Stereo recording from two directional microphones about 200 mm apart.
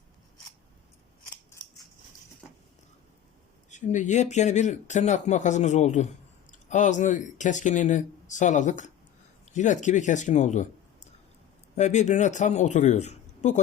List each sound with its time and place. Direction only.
3.7 s speech: 35° left (ahead or behind)
11.8 s speech: 35° left (ahead or behind)